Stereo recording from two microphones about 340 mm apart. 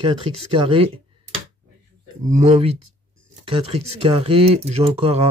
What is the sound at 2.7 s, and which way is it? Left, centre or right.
Speech, right.